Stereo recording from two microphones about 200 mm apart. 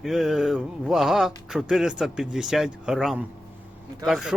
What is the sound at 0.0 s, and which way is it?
Speech, centre (ahead or behind).